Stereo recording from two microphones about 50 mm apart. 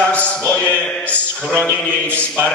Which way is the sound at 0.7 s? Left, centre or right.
Left.